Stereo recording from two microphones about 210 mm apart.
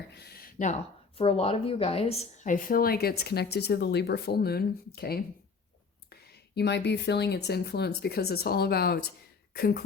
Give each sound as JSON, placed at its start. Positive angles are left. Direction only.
{"t": 0.1, "sound": "speech", "side_deg": 50}
{"t": 1.2, "sound": "a woman's voice", "side_deg": 30}
{"t": 2.4, "sound": "speech", "side_deg": 40}